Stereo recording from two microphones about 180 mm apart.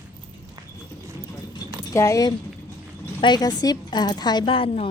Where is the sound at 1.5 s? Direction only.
15° left (ahead or behind).